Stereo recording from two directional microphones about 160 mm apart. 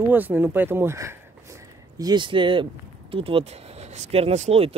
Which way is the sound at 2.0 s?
30° right (ahead or behind).